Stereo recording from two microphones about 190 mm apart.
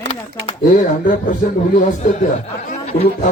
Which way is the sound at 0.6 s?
45° left (ahead or behind).